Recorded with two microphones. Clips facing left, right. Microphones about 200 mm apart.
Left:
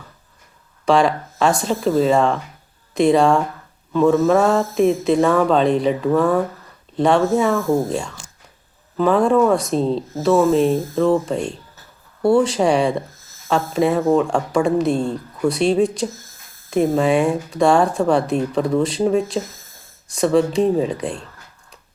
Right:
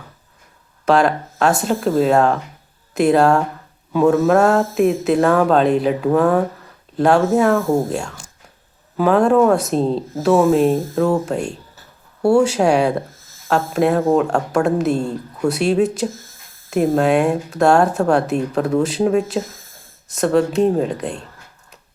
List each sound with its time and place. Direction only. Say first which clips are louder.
0.9 s speech: right 1 dB; 5° right (ahead or behind)